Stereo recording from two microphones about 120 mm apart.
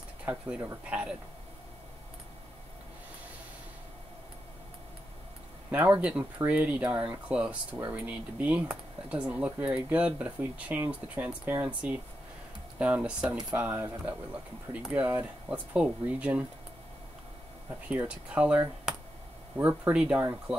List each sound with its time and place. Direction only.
0.2 s speech: 10° right (ahead or behind)
5.7 s speech: 15° right (ahead or behind)
17.8 s speech: 10° right (ahead or behind)